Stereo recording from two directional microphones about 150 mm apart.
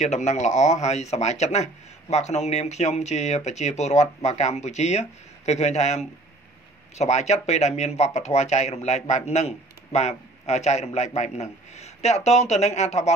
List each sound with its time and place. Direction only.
0.0 s speech: 50° left (ahead or behind)